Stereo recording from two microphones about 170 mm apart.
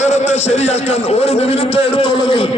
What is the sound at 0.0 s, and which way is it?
A man's voice, 40° left (ahead or behind).